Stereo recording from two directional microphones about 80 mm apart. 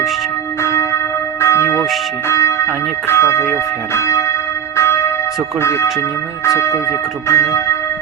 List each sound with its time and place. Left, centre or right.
0.6 s church bell: left
3.1 s speech: left
4.8 s church bell: left
5.5 s speech: left